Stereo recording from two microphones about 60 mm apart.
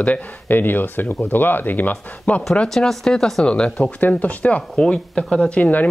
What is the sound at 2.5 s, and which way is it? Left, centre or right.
Speech, centre.